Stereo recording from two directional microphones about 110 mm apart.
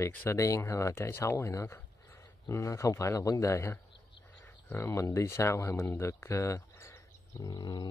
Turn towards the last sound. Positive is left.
turn(degrees=40)  # may be behind; listen again after turning